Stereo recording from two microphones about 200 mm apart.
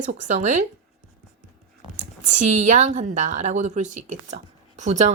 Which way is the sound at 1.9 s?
40° right (ahead or behind).